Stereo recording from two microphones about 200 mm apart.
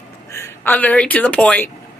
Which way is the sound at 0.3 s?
15° left (ahead or behind).